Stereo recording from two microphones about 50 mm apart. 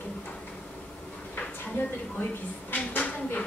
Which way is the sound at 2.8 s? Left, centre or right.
Left.